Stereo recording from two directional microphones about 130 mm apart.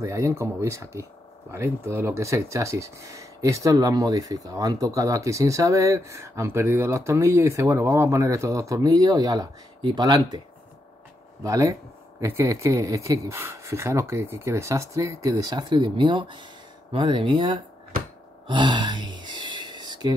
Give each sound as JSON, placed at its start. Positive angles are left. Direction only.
{"t": 0.0, "sound": "speech", "side_deg": -25}
{"t": 11.4, "sound": "speech", "side_deg": -25}
{"t": 18.5, "sound": "a sound", "side_deg": -35}